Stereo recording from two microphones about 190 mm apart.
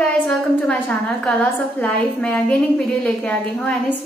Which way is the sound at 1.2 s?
5° left (ahead or behind).